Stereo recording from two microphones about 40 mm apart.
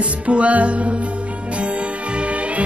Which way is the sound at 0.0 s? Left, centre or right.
Right.